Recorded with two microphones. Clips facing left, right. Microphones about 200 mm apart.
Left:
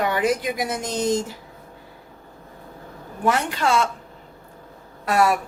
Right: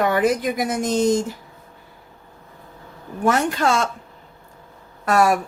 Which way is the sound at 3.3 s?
45° right (ahead or behind).